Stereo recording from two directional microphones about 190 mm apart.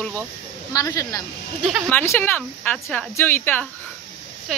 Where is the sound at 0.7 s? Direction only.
20° left (ahead or behind).